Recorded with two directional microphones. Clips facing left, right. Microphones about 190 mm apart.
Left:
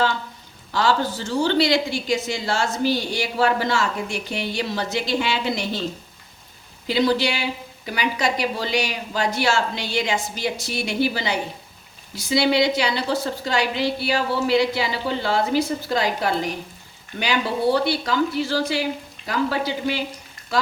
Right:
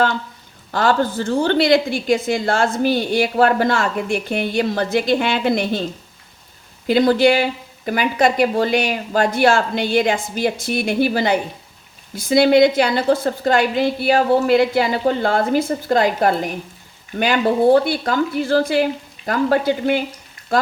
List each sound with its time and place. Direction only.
0.7 s a woman's voice: 50° right (ahead or behind)
6.8 s a woman's voice: 50° right (ahead or behind)